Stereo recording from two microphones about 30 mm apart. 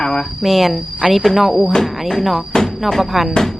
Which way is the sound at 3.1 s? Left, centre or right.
Centre.